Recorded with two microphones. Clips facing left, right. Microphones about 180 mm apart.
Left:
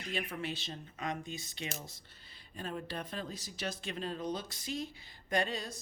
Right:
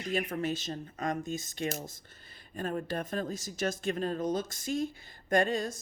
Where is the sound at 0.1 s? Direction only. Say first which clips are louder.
Right 7 dB; 45° right (ahead or behind).